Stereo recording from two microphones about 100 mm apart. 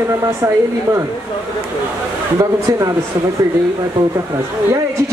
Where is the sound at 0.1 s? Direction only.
30° right (ahead or behind).